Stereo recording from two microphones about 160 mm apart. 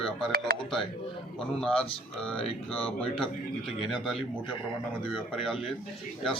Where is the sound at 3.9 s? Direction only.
Centre (ahead or behind).